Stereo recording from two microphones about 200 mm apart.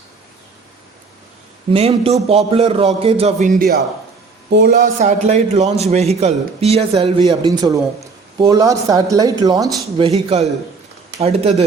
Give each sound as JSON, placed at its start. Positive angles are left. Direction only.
{"t": 1.7, "sound": "a man's voice", "side_deg": -30}
{"t": 4.5, "sound": "speech", "side_deg": -55}
{"t": 4.8, "sound": "a man's voice", "side_deg": -40}
{"t": 10.1, "sound": "a man's voice", "side_deg": -30}